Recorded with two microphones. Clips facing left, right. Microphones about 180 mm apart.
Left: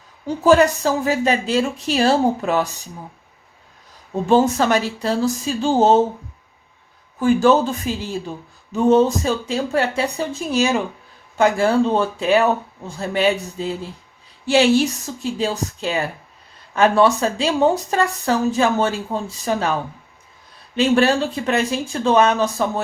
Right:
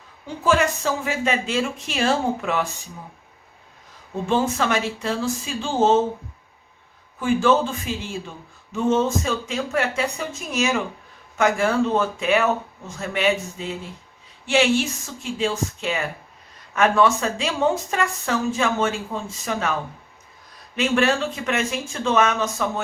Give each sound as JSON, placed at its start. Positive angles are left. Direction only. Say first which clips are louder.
{"t": 0.3, "sound": "speech", "louder": "left 7 dB", "side_deg": 40}
{"t": 4.3, "sound": "speech", "louder": "left 6 dB", "side_deg": 40}
{"t": 7.2, "sound": "speech", "louder": "left 4 dB", "side_deg": 40}
{"t": 20.7, "sound": "speech", "louder": "left 4 dB", "side_deg": 35}